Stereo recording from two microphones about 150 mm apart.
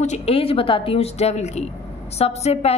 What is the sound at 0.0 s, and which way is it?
A woman's voice, 45° left (ahead or behind).